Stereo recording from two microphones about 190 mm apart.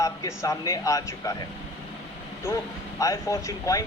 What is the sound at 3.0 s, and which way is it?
Speech, 15° left (ahead or behind).